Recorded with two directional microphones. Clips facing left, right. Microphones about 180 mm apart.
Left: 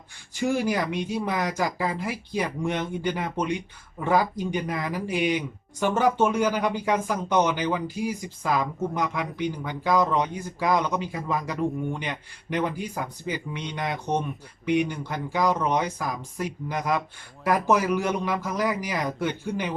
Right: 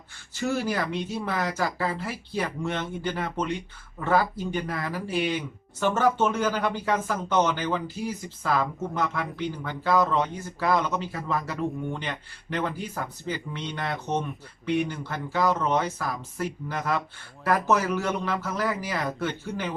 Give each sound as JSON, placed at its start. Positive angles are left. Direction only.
{"t": 0.3, "sound": "speech", "side_deg": 15}